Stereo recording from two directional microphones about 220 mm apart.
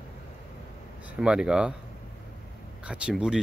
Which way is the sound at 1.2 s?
5° right (ahead or behind).